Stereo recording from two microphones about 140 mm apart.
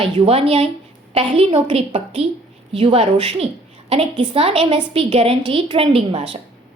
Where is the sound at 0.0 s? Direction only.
45° right (ahead or behind).